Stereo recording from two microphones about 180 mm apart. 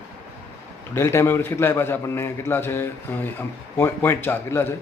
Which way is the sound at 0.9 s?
15° left (ahead or behind).